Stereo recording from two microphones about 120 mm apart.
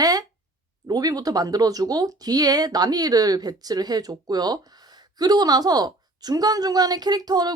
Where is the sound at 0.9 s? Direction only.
30° right (ahead or behind).